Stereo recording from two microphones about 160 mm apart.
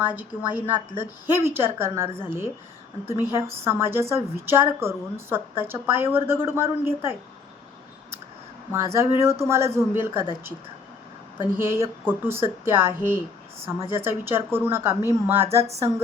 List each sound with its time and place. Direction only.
0.0 s a woman's voice: 10° right (ahead or behind)
8.7 s a woman's voice: 15° right (ahead or behind)
11.5 s a woman's voice: 15° right (ahead or behind)
15.4 s speech: 40° right (ahead or behind)